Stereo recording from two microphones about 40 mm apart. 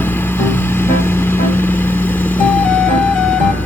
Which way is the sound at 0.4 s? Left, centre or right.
Left.